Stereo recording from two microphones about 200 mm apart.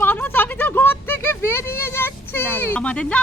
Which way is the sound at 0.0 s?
10° left (ahead or behind).